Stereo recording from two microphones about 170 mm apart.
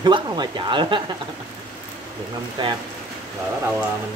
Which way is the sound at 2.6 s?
25° right (ahead or behind).